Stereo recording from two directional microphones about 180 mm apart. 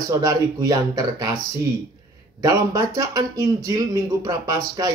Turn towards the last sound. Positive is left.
turn(degrees=-20)  # may be behind; listen again after turning